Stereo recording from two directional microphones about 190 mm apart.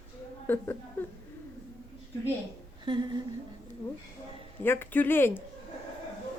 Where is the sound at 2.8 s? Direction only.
25° right (ahead or behind).